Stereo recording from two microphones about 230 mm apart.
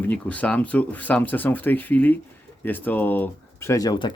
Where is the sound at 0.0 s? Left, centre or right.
Centre.